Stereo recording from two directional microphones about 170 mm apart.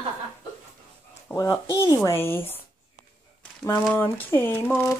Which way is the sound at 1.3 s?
15° left (ahead or behind).